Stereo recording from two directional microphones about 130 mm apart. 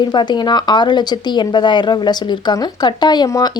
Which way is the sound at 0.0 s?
35° left (ahead or behind).